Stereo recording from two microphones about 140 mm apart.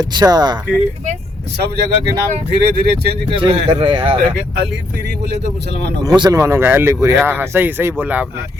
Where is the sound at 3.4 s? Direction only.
35° right (ahead or behind).